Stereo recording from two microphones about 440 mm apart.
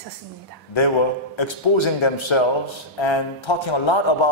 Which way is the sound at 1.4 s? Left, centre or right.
Left.